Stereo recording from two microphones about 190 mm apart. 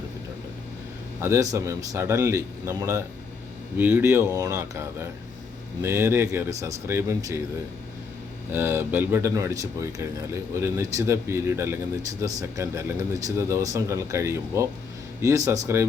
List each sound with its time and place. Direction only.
1.2 s speech: 15° right (ahead or behind)
8.5 s speech: 10° right (ahead or behind)